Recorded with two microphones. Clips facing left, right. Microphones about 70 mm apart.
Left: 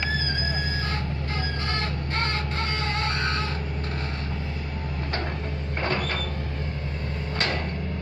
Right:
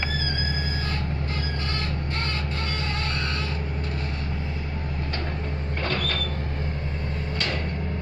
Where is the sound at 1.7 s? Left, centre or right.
Left.